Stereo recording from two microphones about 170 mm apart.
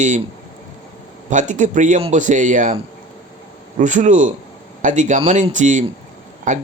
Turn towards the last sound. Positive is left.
turn(degrees=-50)  # may be behind; listen again after turning